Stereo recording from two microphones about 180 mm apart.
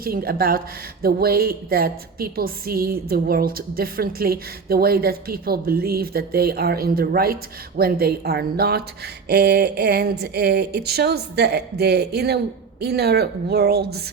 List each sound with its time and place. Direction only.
0.0 s a woman's voice: 55° right (ahead or behind)